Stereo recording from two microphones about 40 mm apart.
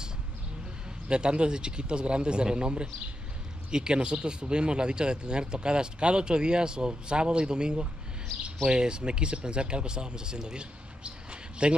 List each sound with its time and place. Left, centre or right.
1.0 s speech: right